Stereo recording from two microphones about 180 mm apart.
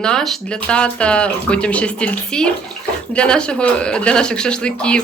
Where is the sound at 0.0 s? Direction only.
5° left (ahead or behind).